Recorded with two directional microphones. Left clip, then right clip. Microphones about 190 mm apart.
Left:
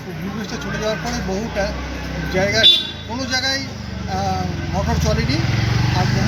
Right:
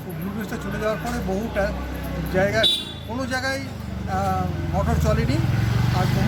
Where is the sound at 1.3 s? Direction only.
15° right (ahead or behind).